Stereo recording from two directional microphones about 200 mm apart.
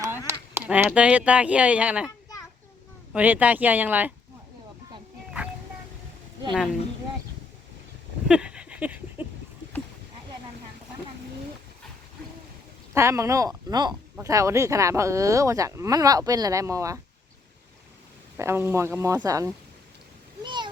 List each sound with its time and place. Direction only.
0.3 s speech: 10° right (ahead or behind)
3.1 s speech: 5° right (ahead or behind)
6.5 s speech: centre (ahead or behind)
8.3 s a sound: 5° right (ahead or behind)
12.9 s speech: 15° right (ahead or behind)
18.3 s speech: 10° right (ahead or behind)
20.4 s a sound: 25° right (ahead or behind)